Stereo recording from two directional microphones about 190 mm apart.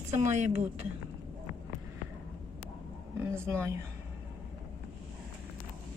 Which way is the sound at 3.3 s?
10° right (ahead or behind).